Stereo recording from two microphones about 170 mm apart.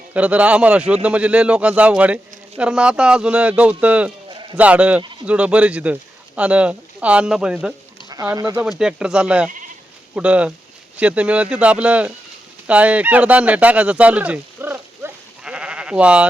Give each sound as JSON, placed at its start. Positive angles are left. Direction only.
{"t": 0.1, "sound": "speech", "side_deg": -10}
{"t": 4.3, "sound": "sheep", "side_deg": -30}
{"t": 4.5, "sound": "speech", "side_deg": -10}
{"t": 8.1, "sound": "speech", "side_deg": -20}
{"t": 8.8, "sound": "speech", "side_deg": -5}